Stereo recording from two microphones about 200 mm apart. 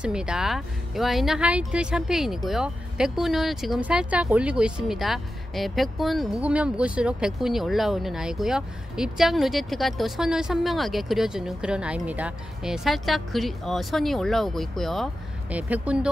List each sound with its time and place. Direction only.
0.0 s speech: 5° right (ahead or behind)